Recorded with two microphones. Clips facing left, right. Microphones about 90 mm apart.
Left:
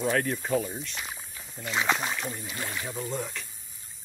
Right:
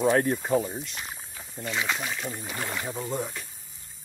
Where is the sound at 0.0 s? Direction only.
20° right (ahead or behind).